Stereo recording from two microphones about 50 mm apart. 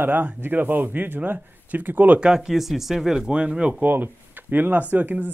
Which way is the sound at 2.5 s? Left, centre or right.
Centre.